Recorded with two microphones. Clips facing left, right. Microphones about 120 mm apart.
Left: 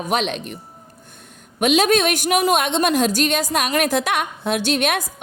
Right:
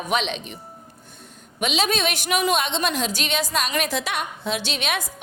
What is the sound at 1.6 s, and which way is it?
A woman's voice, 50° left (ahead or behind).